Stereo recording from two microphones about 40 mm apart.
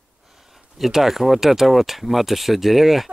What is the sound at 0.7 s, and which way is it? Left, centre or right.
Speech, centre.